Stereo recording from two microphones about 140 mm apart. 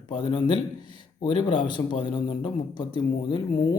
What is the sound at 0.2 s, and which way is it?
Speech, 35° left (ahead or behind).